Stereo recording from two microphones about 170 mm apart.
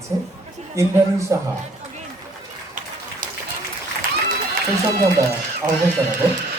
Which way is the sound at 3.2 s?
55° right (ahead or behind).